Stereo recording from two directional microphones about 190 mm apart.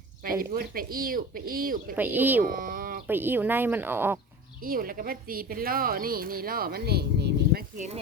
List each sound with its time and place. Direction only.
0.3 s a woman's voice: 50° right (ahead or behind)
2.0 s speech: 10° right (ahead or behind)
2.4 s speech: 50° right (ahead or behind)
3.1 s speech: 10° right (ahead or behind)
4.6 s a woman's voice: 50° right (ahead or behind)